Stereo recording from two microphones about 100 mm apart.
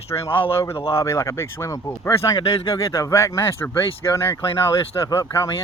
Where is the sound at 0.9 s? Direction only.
30° left (ahead or behind).